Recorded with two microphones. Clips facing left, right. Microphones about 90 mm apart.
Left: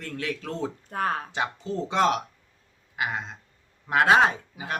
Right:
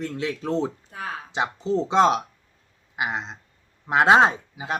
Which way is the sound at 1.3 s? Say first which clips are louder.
Right 5 dB; 20° right (ahead or behind).